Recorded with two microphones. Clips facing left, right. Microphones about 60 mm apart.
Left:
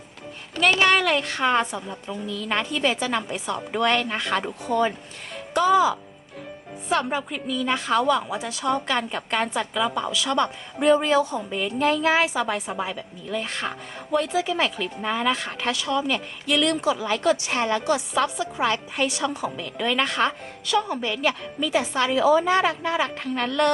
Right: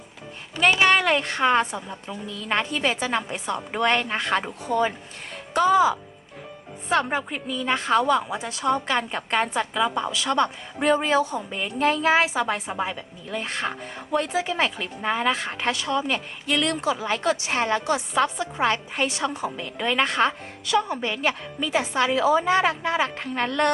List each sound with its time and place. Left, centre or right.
0.6 s a woman's voice: right
2.2 s a woman's voice: right
4.4 s a woman's voice: centre
5.5 s a woman's voice: right
6.8 s speech: right
8.6 s a woman's voice: right
14.3 s a woman's voice: right